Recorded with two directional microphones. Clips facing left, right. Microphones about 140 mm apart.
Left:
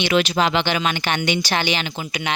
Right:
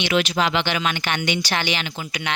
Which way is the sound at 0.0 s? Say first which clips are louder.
Left 2 dB; 35° left (ahead or behind).